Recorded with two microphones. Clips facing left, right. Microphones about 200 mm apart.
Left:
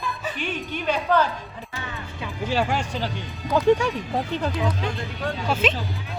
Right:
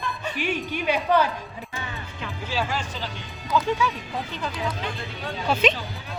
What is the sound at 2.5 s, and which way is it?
Speech, 60° left (ahead or behind).